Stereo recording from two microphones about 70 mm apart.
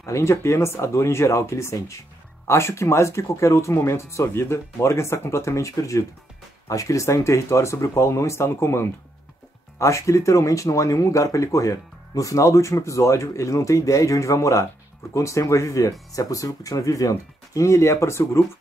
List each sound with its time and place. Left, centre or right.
0.0 s speech: left